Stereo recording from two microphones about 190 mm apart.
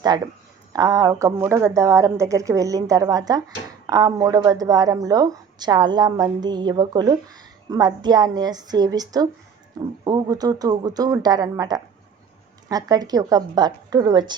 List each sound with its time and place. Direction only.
0.7 s a woman's voice: 20° right (ahead or behind)